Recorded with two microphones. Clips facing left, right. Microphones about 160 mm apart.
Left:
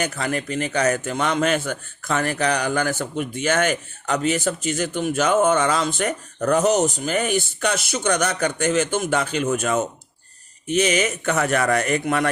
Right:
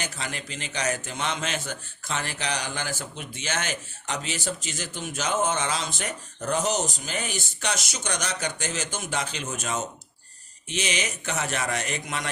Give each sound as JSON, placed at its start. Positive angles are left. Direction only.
{"t": 0.0, "sound": "a man's voice", "side_deg": 55}